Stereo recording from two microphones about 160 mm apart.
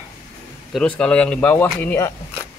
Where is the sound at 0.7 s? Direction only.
5° left (ahead or behind).